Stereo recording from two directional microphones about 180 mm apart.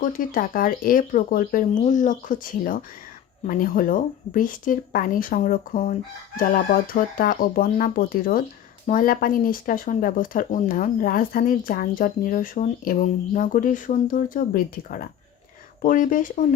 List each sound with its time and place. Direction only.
0.0 s speech: 50° left (ahead or behind)